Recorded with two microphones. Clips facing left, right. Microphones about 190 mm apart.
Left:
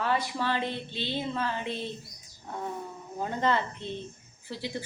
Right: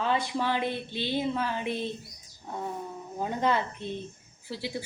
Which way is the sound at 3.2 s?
15° right (ahead or behind).